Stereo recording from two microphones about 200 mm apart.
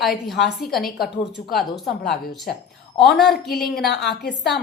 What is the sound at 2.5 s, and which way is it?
Speech, 50° left (ahead or behind).